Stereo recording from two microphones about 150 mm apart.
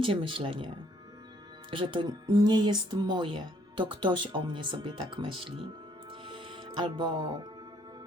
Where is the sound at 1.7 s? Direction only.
35° right (ahead or behind).